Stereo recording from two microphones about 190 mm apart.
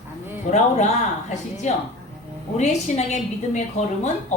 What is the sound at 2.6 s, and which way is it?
A woman's voice, 35° left (ahead or behind).